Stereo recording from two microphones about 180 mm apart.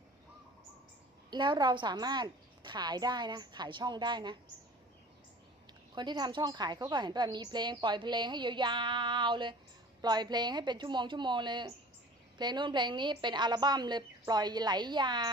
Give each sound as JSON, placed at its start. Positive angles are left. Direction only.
{"t": 1.3, "sound": "a woman's voice", "side_deg": -25}
{"t": 5.9, "sound": "a woman's voice", "side_deg": -25}